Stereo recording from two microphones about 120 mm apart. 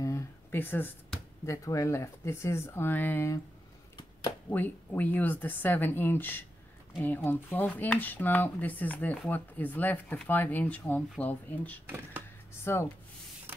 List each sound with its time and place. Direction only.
0.0 s a sound: 20° left (ahead or behind)
1.4 s speech: 25° left (ahead or behind)
4.5 s speech: 15° left (ahead or behind)
11.8 s speech: 20° right (ahead or behind)
12.7 s speech: 20° left (ahead or behind)
13.5 s printer: 15° right (ahead or behind)